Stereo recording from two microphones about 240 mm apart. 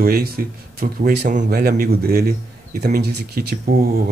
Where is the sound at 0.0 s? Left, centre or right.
Right.